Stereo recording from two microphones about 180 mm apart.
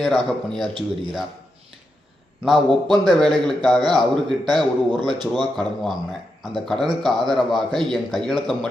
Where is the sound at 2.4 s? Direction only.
Centre (ahead or behind).